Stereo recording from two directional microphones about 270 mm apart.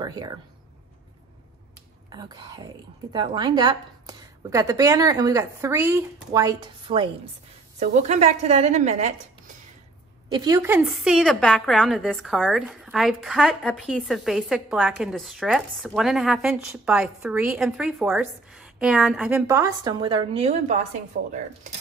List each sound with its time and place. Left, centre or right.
0.0 s speech: centre
2.0 s a woman's voice: centre
10.3 s a woman's voice: centre
21.2 s speech: right